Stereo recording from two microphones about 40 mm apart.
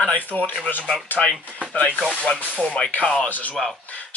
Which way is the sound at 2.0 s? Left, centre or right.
Centre.